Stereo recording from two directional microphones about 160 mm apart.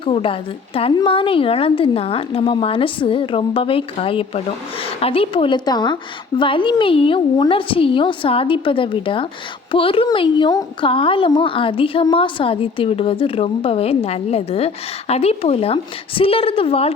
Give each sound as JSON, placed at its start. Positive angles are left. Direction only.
{"t": 0.0, "sound": "a woman's voice", "side_deg": 35}